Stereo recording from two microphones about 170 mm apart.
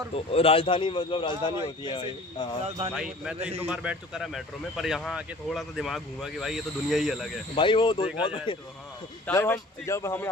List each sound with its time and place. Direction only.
0.1 s a man's voice: 35° left (ahead or behind)
2.6 s speech: 40° right (ahead or behind)
2.9 s speech: 5° right (ahead or behind)
7.5 s a man's voice: 30° left (ahead or behind)
9.3 s a man's voice: 15° left (ahead or behind)